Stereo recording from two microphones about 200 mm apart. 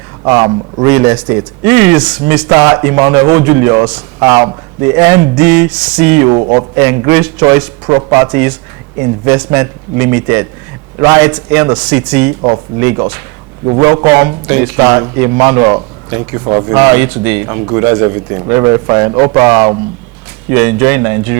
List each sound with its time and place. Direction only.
0.3 s speech: 20° right (ahead or behind)